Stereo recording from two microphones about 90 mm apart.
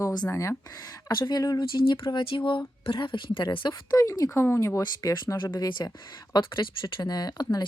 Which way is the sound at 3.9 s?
40° left (ahead or behind).